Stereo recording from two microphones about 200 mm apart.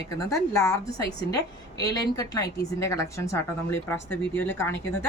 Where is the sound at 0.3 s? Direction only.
15° left (ahead or behind).